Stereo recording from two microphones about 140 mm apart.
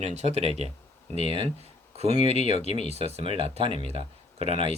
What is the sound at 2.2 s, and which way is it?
Speech, 50° left (ahead or behind).